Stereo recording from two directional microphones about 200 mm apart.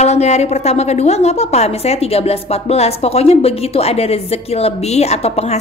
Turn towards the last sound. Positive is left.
turn(degrees=30)  # may be behind; listen again after turning